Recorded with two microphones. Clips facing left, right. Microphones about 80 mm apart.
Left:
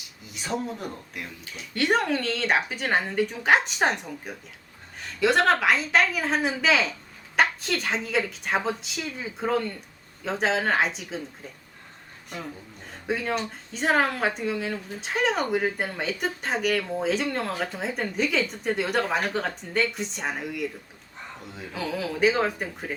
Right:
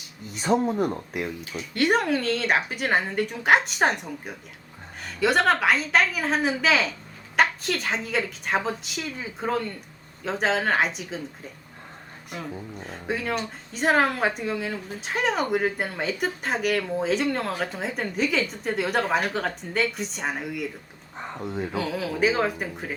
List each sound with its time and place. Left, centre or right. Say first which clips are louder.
0.3 s speech: right 8 dB; right
1.5 s speech: right 1 dB; centre
12.9 s speech: left 1 dB; centre
21.2 s speech: right 9 dB; right
21.8 s speech: left 1 dB; centre